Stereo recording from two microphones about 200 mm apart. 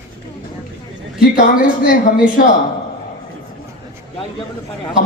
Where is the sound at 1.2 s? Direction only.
45° left (ahead or behind).